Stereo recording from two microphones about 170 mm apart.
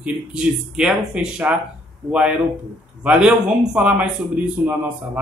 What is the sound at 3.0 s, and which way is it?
A man's voice, 5° right (ahead or behind).